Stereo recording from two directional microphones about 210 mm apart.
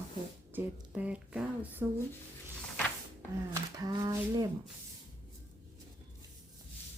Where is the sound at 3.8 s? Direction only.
15° right (ahead or behind).